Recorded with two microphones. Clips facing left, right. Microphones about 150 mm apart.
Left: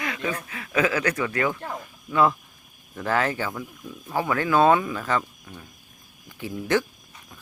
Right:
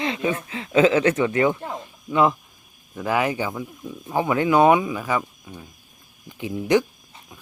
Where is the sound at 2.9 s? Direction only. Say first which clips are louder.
Right 2 dB; 10° right (ahead or behind).